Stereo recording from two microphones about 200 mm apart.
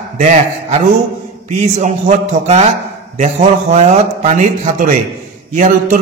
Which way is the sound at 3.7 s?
35° right (ahead or behind).